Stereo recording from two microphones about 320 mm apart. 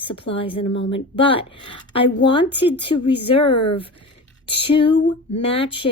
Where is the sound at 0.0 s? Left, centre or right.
Centre.